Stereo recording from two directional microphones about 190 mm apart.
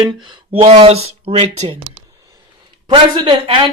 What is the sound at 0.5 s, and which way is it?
Speech, 35° right (ahead or behind).